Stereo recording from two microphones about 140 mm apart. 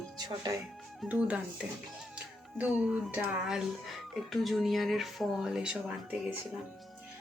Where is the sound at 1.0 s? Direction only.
10° right (ahead or behind).